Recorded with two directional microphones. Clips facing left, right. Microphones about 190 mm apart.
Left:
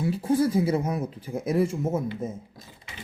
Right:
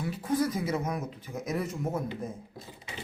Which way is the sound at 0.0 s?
30° left (ahead or behind).